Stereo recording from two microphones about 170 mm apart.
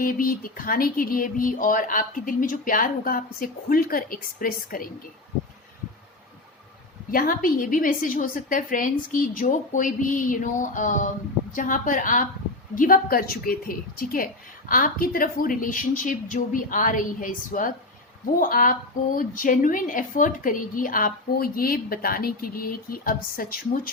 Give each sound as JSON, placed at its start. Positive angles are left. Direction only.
{"t": 0.0, "sound": "a woman's voice", "side_deg": 55}
{"t": 7.1, "sound": "a woman's voice", "side_deg": 55}